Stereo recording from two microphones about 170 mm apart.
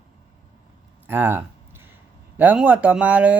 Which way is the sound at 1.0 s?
10° right (ahead or behind).